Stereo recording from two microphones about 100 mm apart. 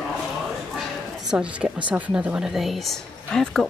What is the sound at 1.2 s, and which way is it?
A woman's voice, 10° right (ahead or behind).